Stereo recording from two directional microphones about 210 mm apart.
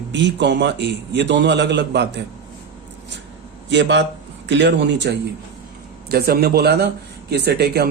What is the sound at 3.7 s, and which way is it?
Speech, 55° right (ahead or behind).